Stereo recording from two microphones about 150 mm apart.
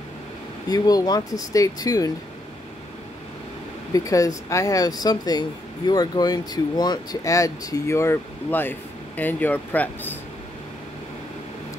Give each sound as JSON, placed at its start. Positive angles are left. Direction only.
{"t": 0.7, "sound": "speech", "side_deg": 25}
{"t": 3.9, "sound": "speech", "side_deg": 20}